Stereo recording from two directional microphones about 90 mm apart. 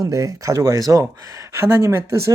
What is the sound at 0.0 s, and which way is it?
Speech, 35° right (ahead or behind).